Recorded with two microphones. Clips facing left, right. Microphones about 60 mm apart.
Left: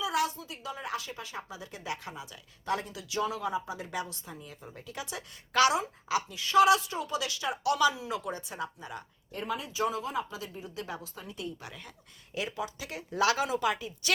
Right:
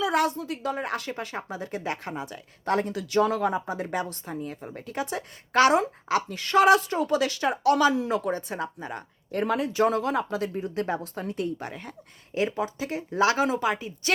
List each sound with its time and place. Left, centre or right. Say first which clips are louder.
0.0 s a woman's voice: right 6 dB; right
5.8 s a woman's voice: right 5 dB; right
9.4 s speech: right 8 dB; right